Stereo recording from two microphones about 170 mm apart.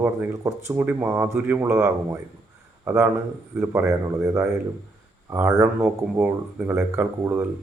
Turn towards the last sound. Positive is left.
turn(degrees=-10)  # may be behind; listen again after turning